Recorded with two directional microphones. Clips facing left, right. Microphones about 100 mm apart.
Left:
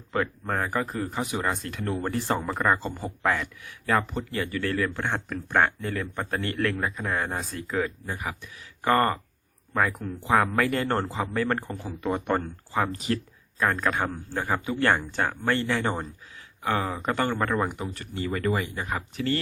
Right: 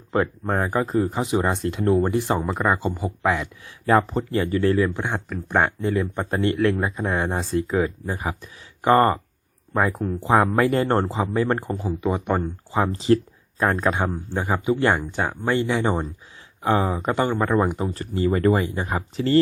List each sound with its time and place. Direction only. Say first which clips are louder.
0.1 s speech: right 5 dB; 30° right (ahead or behind)
2.0 s speech: right 5 dB; 15° right (ahead or behind)
3.4 s speech: right 6 dB; 30° right (ahead or behind); by 12.8 s 15° right (ahead or behind)
12.8 s speech: right 9 dB; 30° right (ahead or behind)
16.6 s speech: right 6 dB; 30° right (ahead or behind)
17.0 s speech: right 4 dB; 20° right (ahead or behind)
17.5 s speech: right 6 dB; 30° right (ahead or behind)